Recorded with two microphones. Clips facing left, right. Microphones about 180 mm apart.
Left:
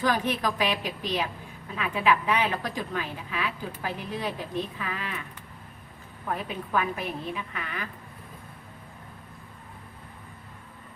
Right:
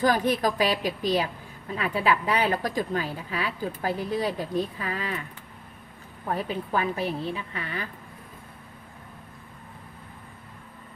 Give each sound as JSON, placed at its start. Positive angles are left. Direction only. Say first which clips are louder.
{"t": 0.0, "sound": "a woman's voice", "louder": "right 4 dB", "side_deg": -35}
{"t": 6.3, "sound": "a woman's voice", "louder": "right 2 dB", "side_deg": -35}